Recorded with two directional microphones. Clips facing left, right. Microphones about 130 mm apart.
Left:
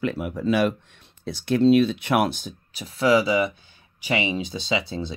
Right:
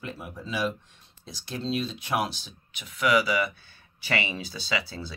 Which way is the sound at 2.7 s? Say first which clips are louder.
Left 5 dB; 35° left (ahead or behind).